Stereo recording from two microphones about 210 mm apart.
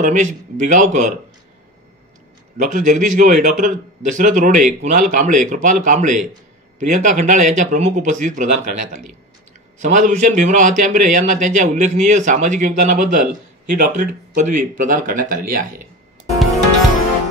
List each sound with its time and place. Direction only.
0.0 s a man's voice: 35° right (ahead or behind)
2.5 s a man's voice: 40° right (ahead or behind)